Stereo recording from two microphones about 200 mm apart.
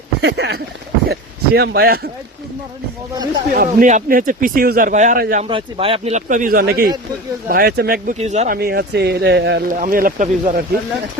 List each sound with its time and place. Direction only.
0.2 s speech: 60° right (ahead or behind)
3.5 s speech: 45° right (ahead or behind)
5.4 s a man's voice: 25° right (ahead or behind); by 8.1 s 50° right (ahead or behind)
8.2 s a man's voice: 35° right (ahead or behind)
8.5 s speech: 55° right (ahead or behind)